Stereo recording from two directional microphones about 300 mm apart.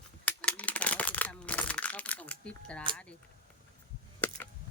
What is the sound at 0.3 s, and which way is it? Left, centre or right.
Crumpling, centre.